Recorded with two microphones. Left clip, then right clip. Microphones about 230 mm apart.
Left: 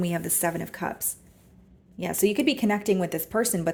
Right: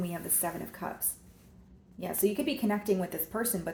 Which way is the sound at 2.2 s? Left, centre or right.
Left.